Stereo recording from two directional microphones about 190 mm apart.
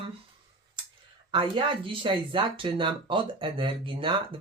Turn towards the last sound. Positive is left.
turn(degrees=-25)  # may be behind; listen again after turning